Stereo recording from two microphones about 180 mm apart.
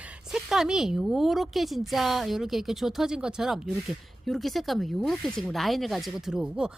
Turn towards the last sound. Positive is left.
turn(degrees=-5)  # may be behind; listen again after turning